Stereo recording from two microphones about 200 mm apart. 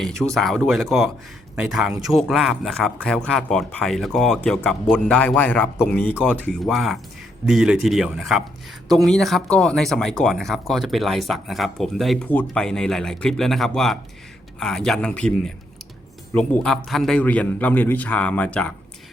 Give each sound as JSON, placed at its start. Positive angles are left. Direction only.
{"t": 0.0, "sound": "a man's voice", "side_deg": 5}